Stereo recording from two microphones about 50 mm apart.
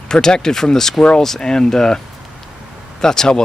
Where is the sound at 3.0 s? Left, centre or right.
Centre.